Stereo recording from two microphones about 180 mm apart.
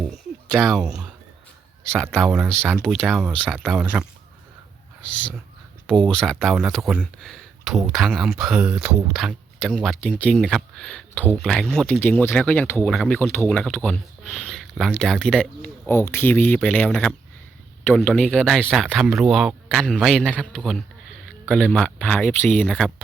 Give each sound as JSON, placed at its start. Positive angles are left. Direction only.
{"t": 0.5, "sound": "speech", "side_deg": 0}
{"t": 6.1, "sound": "speech", "side_deg": 0}